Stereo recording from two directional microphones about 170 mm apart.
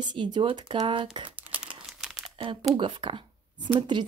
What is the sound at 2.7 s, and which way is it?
Speech, 30° right (ahead or behind).